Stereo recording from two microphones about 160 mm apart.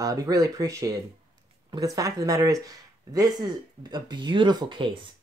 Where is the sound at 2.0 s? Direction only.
20° right (ahead or behind).